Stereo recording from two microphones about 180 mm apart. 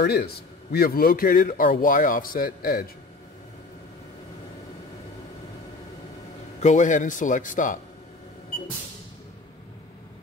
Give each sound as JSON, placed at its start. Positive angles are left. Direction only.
{"t": 0.0, "sound": "a man's voice", "side_deg": 65}
{"t": 6.6, "sound": "a man's voice", "side_deg": 45}